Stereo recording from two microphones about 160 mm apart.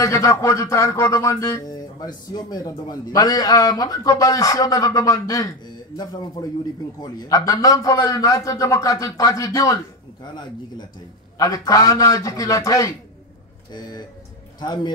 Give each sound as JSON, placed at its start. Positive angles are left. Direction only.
{"t": 0.0, "sound": "speech", "side_deg": 20}
{"t": 7.0, "sound": "speech", "side_deg": 25}
{"t": 11.3, "sound": "speech", "side_deg": 20}